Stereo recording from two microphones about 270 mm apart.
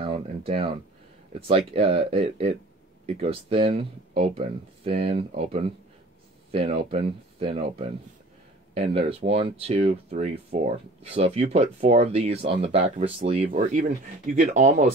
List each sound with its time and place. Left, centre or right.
0.0 s speech: right
1.7 s speech: right